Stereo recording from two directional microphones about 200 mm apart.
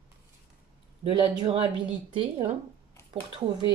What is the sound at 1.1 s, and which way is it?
Speech, 25° right (ahead or behind).